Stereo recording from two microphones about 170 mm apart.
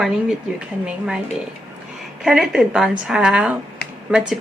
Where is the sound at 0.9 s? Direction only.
5° right (ahead or behind).